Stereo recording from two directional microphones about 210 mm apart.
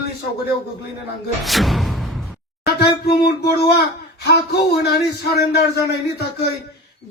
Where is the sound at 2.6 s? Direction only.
50° left (ahead or behind).